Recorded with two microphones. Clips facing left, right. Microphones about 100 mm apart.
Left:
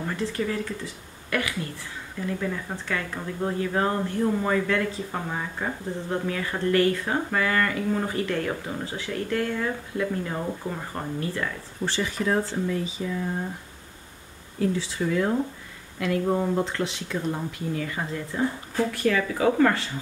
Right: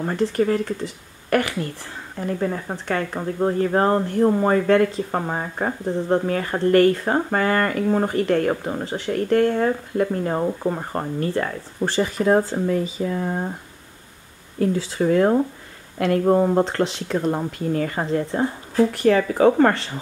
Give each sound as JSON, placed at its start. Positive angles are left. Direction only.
{"t": 0.0, "sound": "speech", "side_deg": -40}
{"t": 2.1, "sound": "speech", "side_deg": -45}
{"t": 14.8, "sound": "speech", "side_deg": -45}